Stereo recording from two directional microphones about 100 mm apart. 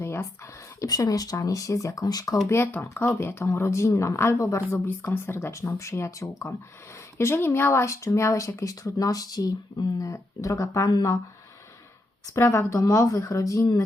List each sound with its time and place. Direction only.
0.0 s a sound: 25° left (ahead or behind)
0.8 s speech: 40° left (ahead or behind)
2.5 s speech: 25° left (ahead or behind)
12.3 s speech: 30° left (ahead or behind)